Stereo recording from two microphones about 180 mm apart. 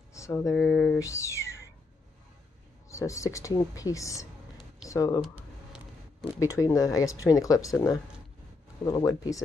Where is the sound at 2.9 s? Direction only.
15° left (ahead or behind).